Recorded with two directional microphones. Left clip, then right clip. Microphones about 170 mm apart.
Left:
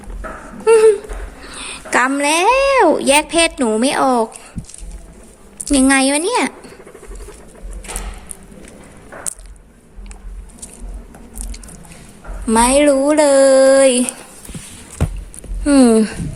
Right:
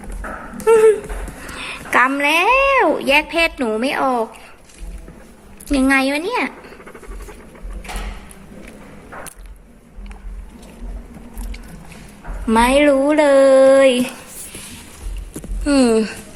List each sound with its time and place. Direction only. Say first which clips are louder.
0.6 s a sound: left 2 dB; 15° left (ahead or behind)
1.9 s a woman's voice: even; 30° left (ahead or behind)
5.6 s a woman's voice: left 2 dB; 25° left (ahead or behind)
12.5 s speech: left 1 dB; 15° left (ahead or behind)
15.6 s a woman's voice: left 3 dB; 25° left (ahead or behind)